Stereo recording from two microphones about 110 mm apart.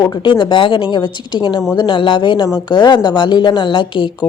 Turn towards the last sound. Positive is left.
turn(degrees=45)  # may be behind; listen again after turning